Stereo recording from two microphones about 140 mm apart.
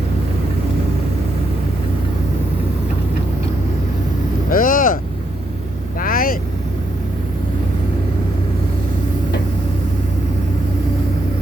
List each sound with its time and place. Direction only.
4.4 s vehicle: 90° left
6.0 s vehicle: 90° left